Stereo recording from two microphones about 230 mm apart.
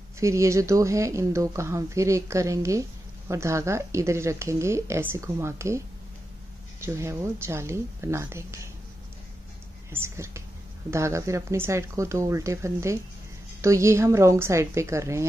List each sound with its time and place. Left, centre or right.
0.2 s speech: centre
6.8 s speech: centre
9.9 s speech: centre